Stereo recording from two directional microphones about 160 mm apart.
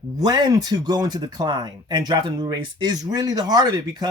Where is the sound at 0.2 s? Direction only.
25° right (ahead or behind).